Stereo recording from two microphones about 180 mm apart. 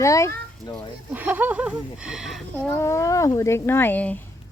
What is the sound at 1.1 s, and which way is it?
Speech, 10° right (ahead or behind).